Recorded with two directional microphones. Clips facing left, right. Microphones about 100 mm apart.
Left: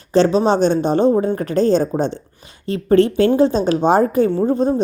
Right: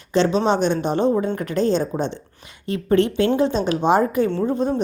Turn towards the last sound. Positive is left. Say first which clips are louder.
# left 4 dB
turn(degrees=35)  # may be behind; listen again after turning